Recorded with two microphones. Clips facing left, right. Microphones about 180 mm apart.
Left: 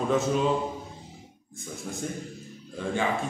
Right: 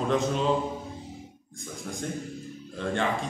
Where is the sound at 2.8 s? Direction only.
5° left (ahead or behind).